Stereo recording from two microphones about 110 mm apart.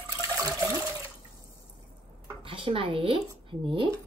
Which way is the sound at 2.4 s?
55° right (ahead or behind).